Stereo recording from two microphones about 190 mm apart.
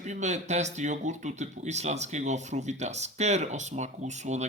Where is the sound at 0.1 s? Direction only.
35° right (ahead or behind).